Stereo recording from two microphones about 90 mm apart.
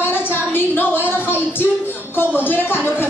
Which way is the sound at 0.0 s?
25° left (ahead or behind).